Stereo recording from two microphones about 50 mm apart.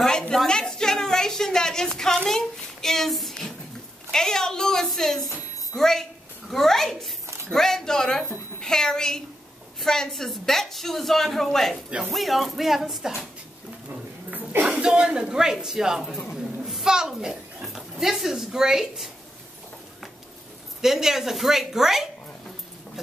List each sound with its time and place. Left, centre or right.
0.5 s a woman's voice: centre
2.2 s child singing: centre
4.1 s a woman's voice: centre
14.3 s a sound: right
14.7 s speech: centre
16.6 s a sound: centre
17.1 s speech: centre
20.8 s a woman's voice: centre